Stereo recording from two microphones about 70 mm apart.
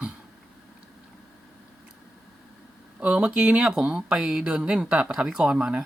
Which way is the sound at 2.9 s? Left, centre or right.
Centre.